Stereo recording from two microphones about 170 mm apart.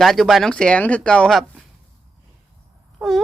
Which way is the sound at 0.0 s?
Centre (ahead or behind).